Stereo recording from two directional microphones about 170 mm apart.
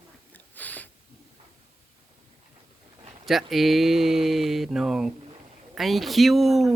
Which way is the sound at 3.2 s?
Centre (ahead or behind).